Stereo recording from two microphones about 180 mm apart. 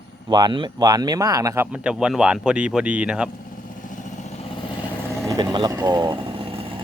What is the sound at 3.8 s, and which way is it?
Vehicle, 45° left (ahead or behind).